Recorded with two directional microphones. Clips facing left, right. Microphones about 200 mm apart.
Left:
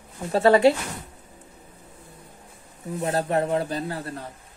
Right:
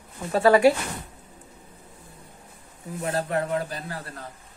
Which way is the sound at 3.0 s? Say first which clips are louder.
Left 3 dB; 25° left (ahead or behind).